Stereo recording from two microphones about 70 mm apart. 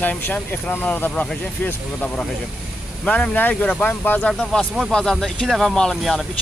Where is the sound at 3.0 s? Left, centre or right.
Centre.